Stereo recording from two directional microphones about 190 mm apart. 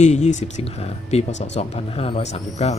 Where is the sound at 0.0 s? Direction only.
40° left (ahead or behind).